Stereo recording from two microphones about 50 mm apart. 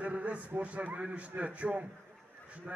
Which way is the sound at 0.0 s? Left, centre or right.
Right.